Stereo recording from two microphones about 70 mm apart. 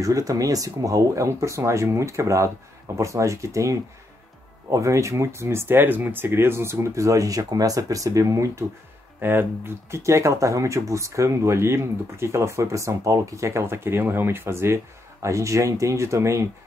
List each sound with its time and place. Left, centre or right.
0.0 s speech: right
9.2 s speech: right